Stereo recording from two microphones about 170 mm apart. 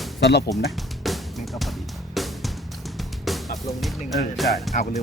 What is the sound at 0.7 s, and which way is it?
Music, centre (ahead or behind).